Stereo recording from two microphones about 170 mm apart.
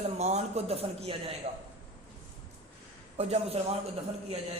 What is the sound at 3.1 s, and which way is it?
Speech, 35° right (ahead or behind).